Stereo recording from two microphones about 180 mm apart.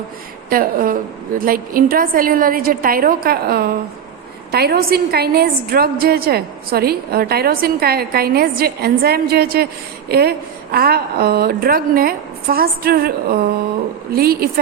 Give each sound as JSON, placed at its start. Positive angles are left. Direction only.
{"t": 0.5, "sound": "a woman's voice", "side_deg": -50}